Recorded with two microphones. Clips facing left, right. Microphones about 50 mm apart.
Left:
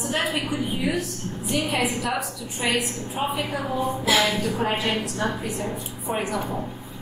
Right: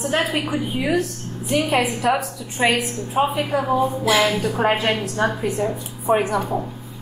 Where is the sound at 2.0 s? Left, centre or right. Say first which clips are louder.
Right 6 dB; right.